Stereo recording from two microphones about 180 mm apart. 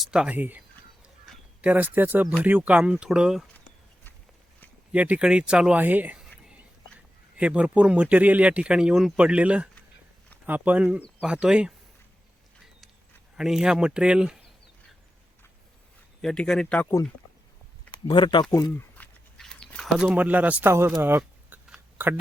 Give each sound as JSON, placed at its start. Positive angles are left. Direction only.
{"t": 0.0, "sound": "speech", "side_deg": -5}
{"t": 4.9, "sound": "speech", "side_deg": -5}
{"t": 7.3, "sound": "speech", "side_deg": -5}
{"t": 13.3, "sound": "speech", "side_deg": -5}
{"t": 16.2, "sound": "speech", "side_deg": 5}
{"t": 17.9, "sound": "speech", "side_deg": 25}
{"t": 18.5, "sound": "speech", "side_deg": 15}
{"t": 19.4, "sound": "a sound", "side_deg": 5}